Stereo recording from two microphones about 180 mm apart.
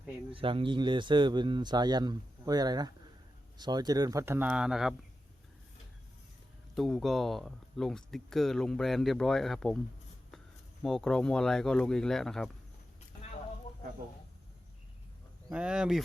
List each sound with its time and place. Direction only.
0.3 s speech: 30° right (ahead or behind); by 4.9 s centre (ahead or behind)
6.7 s speech: centre (ahead or behind)
10.8 s speech: 5° left (ahead or behind)
15.4 s speech: 5° right (ahead or behind)